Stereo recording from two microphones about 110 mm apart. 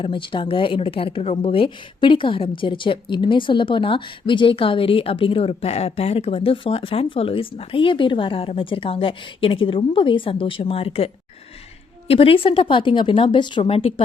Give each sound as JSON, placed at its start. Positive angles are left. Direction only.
{"t": 0.0, "sound": "a woman's voice", "side_deg": 50}
{"t": 13.7, "sound": "speech", "side_deg": 60}